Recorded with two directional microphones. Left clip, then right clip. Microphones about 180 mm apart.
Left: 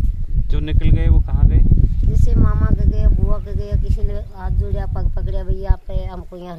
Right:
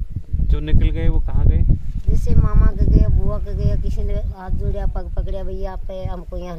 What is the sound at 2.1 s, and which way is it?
Speech, 25° right (ahead or behind).